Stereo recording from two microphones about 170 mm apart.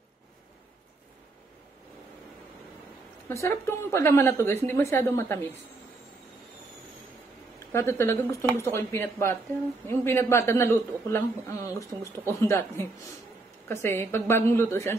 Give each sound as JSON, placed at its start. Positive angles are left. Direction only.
{"t": 3.3, "sound": "speech", "side_deg": 15}
{"t": 7.7, "sound": "speech", "side_deg": 15}